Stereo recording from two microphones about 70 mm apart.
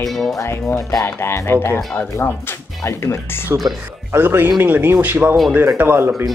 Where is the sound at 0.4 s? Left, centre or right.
Left.